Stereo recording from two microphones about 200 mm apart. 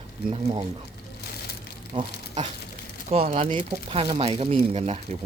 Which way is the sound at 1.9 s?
25° right (ahead or behind).